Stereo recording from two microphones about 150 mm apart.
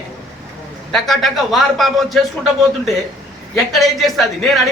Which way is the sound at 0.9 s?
Centre (ahead or behind).